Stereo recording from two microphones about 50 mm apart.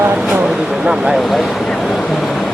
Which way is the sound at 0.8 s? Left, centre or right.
Centre.